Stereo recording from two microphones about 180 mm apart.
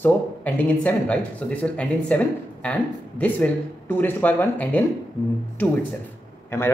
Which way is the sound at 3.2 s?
10° left (ahead or behind).